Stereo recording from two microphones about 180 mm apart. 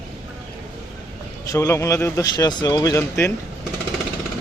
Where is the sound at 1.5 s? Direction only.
15° left (ahead or behind).